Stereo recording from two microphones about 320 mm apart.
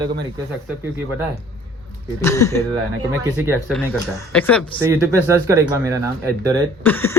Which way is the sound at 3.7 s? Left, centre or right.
Centre.